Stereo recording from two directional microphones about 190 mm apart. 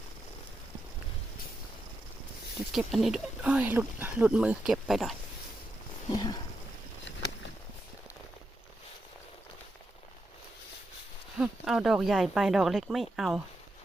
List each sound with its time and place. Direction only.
2.7 s speech: centre (ahead or behind)
6.1 s a sound: 20° left (ahead or behind)
11.3 s speech: centre (ahead or behind)